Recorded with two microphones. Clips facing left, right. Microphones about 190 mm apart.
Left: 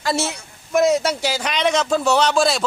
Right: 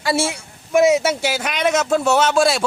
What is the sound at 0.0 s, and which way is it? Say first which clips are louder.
A man's voice: right 2 dB; 5° right (ahead or behind).